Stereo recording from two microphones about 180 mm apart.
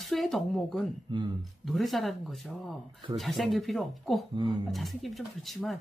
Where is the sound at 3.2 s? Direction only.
Centre (ahead or behind).